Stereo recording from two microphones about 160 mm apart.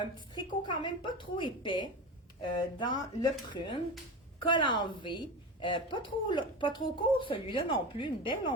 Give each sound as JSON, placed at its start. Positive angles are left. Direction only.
{"t": 0.0, "sound": "a woman's voice", "side_deg": 30}